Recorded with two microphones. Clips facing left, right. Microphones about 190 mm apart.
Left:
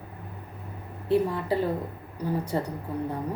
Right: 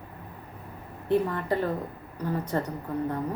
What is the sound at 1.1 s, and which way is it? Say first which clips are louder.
Speech: left 1 dB; 10° left (ahead or behind).